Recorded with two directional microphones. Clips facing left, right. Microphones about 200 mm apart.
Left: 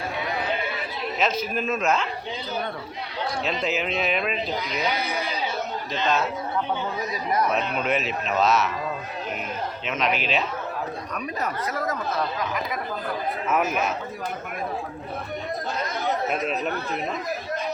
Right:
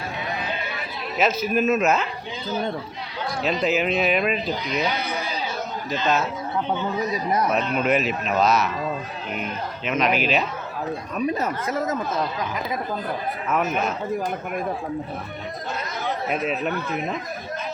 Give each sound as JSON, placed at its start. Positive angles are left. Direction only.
{"t": 1.2, "sound": "a man's voice", "side_deg": -5}
{"t": 3.6, "sound": "a man's voice", "side_deg": 0}
{"t": 7.5, "sound": "a man's voice", "side_deg": 0}
{"t": 9.8, "sound": "a man's voice", "side_deg": 0}
{"t": 11.1, "sound": "speech", "side_deg": -25}
{"t": 13.5, "sound": "a man's voice", "side_deg": 0}